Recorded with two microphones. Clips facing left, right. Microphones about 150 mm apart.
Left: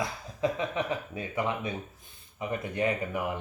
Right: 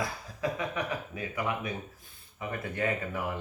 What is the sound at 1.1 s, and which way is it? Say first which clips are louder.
Speech: left 2 dB; 25° left (ahead or behind).